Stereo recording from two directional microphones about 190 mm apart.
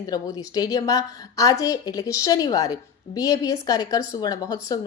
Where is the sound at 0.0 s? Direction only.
20° left (ahead or behind).